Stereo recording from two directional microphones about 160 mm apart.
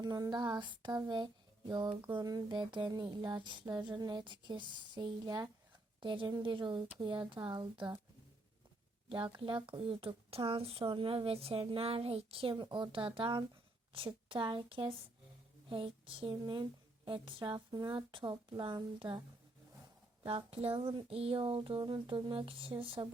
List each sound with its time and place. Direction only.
0.0 s speech: 25° right (ahead or behind)
1.9 s a sound: 10° right (ahead or behind)
2.1 s speech: 25° right (ahead or behind)
9.0 s speech: 30° right (ahead or behind)
20.2 s speech: 35° right (ahead or behind)